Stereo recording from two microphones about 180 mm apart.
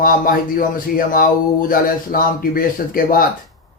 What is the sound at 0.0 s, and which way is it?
Speech, 50° left (ahead or behind).